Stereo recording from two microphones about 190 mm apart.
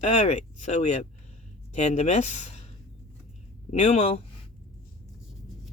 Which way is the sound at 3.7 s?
35° left (ahead or behind).